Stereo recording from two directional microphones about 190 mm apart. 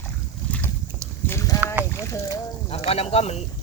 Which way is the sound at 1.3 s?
15° left (ahead or behind).